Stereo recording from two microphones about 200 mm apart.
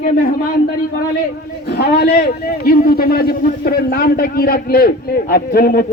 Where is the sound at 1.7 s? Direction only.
55° left (ahead or behind).